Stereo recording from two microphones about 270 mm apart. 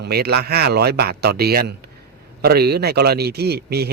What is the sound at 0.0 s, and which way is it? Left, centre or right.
Speech, right.